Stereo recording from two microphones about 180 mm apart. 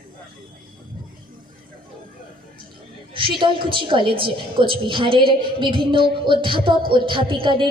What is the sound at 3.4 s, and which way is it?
A woman's voice, 30° right (ahead or behind).